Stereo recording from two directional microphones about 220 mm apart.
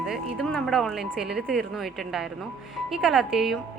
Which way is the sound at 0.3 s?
Centre (ahead or behind).